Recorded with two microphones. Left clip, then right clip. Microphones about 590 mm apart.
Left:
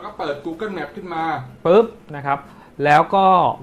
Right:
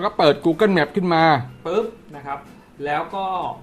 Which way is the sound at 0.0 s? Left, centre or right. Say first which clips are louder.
Right 9 dB; right.